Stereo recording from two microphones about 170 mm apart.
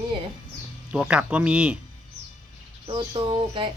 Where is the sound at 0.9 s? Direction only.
5° right (ahead or behind).